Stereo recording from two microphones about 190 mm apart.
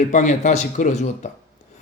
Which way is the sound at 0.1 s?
40° left (ahead or behind).